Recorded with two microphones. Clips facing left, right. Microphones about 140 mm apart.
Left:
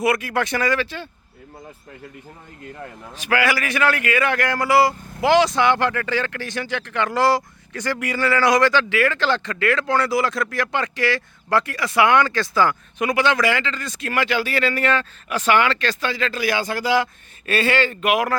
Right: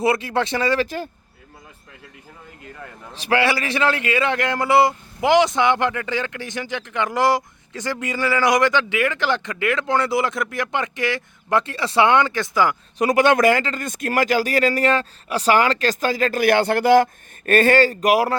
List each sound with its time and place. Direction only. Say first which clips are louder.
0.0 s speech: right 1 dB; 25° right (ahead or behind)
0.8 s speech: right 4 dB; 40° right (ahead or behind)
3.2 s speech: right 1 dB; 30° right (ahead or behind)
13.0 s speech: right 4 dB; 40° right (ahead or behind)